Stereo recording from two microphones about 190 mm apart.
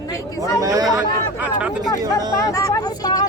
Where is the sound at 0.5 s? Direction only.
20° right (ahead or behind).